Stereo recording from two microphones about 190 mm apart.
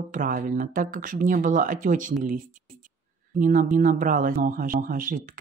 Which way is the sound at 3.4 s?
45° right (ahead or behind).